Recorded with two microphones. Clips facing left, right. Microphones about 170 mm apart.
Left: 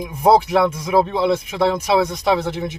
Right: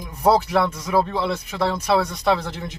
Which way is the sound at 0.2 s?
20° left (ahead or behind).